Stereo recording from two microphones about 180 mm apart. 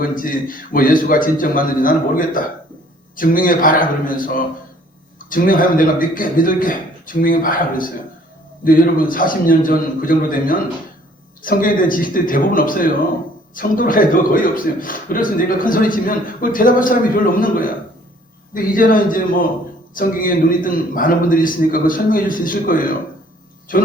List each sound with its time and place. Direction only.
0.0 s a man's voice: 50° left (ahead or behind)